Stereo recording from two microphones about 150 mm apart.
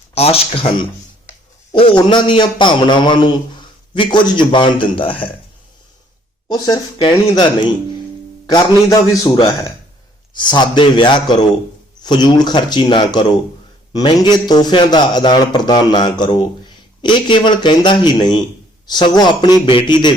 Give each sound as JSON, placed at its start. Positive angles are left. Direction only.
{"t": 0.1, "sound": "a man's voice", "side_deg": 40}
{"t": 6.5, "sound": "a man's voice", "side_deg": 25}